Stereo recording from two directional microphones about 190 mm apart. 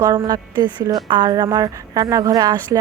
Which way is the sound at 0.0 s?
20° right (ahead or behind).